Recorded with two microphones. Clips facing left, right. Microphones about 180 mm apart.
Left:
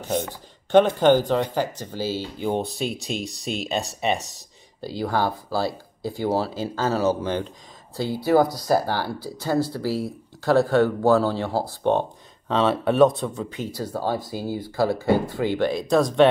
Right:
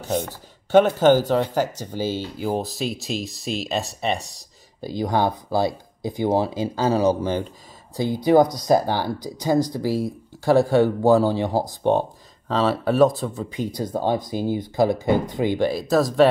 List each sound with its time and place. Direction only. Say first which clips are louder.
0.7 s speech: right 1 dB; 10° right (ahead or behind)
2.2 s speech: even; 5° right (ahead or behind)
4.8 s speech: right 2 dB; 15° right (ahead or behind)
13.7 s speech: right 3 dB; 20° right (ahead or behind); by 16.3 s centre (ahead or behind)